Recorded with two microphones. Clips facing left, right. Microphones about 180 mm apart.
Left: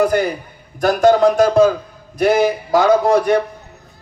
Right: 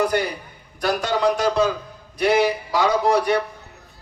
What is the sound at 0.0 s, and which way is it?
A man's voice, 50° left (ahead or behind).